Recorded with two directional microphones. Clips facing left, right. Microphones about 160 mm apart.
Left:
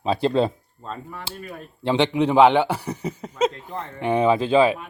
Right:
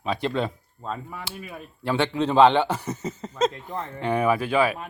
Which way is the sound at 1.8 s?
20° left (ahead or behind).